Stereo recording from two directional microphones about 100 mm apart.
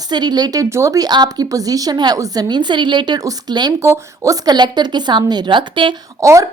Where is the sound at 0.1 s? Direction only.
45° right (ahead or behind).